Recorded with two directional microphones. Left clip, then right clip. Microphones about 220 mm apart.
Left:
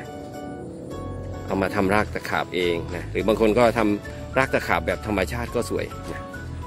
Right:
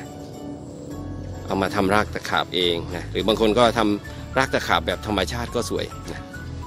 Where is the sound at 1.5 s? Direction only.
Centre (ahead or behind).